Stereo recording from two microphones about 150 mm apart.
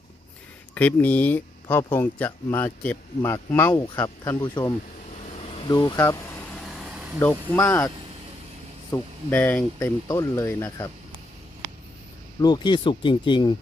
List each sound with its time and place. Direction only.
0.7 s speech: 10° left (ahead or behind)
5.2 s vehicle: 45° left (ahead or behind)
5.6 s vehicle: 25° left (ahead or behind); by 7.2 s 10° right (ahead or behind)
7.5 s speech: 15° left (ahead or behind)
8.9 s speech: 10° left (ahead or behind)
12.4 s speech: 30° left (ahead or behind)